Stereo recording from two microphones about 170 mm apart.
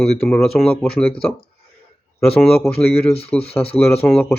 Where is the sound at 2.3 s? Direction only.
5° left (ahead or behind).